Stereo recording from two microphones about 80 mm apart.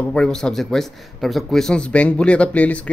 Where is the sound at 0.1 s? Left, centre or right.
Centre.